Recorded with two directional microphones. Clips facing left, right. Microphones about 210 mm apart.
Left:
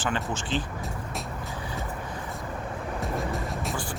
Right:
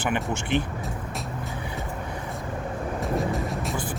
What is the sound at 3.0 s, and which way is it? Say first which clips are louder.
Music: right 4 dB; centre (ahead or behind).